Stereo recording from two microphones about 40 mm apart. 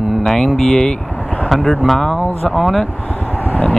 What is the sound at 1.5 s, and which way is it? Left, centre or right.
Speech, centre.